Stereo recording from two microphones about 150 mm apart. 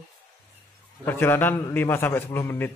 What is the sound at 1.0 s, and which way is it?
A man's voice, 15° left (ahead or behind).